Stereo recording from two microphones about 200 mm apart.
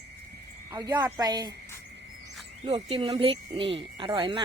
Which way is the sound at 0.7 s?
15° right (ahead or behind).